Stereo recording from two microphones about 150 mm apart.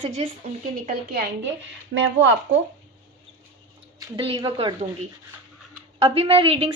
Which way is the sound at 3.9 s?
35° right (ahead or behind).